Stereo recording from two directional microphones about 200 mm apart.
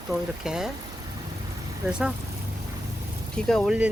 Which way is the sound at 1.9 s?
5° right (ahead or behind).